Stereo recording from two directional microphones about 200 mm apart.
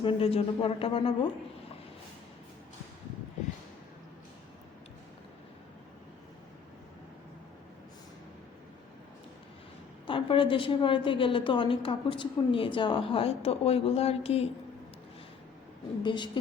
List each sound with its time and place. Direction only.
0.0 s a woman's voice: 25° left (ahead or behind)
10.1 s a woman's voice: 25° left (ahead or behind)
16.0 s a woman's voice: 25° left (ahead or behind)